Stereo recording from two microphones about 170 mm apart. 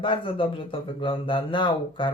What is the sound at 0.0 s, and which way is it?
Speech, 30° left (ahead or behind).